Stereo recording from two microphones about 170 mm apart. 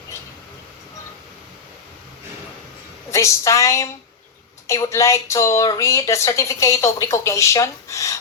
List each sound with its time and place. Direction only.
3.1 s speech: 15° left (ahead or behind)